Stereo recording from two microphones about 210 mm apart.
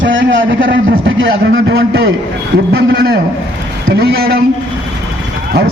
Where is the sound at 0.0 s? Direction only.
65° right (ahead or behind).